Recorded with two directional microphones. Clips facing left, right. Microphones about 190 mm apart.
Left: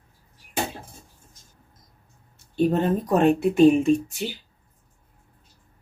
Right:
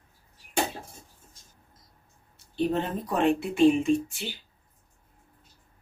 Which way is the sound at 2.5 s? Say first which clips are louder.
Left 6 dB; 45° left (ahead or behind).